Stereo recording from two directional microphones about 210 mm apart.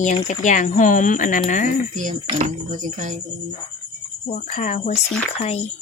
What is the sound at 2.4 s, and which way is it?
Speech, 35° right (ahead or behind).